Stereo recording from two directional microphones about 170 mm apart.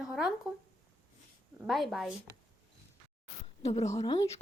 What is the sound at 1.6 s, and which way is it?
Speech, centre (ahead or behind).